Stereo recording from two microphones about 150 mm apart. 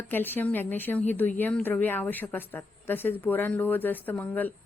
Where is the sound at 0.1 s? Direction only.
15° left (ahead or behind).